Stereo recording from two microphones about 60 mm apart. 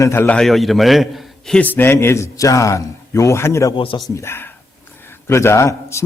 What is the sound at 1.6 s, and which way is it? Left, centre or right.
Speech, left.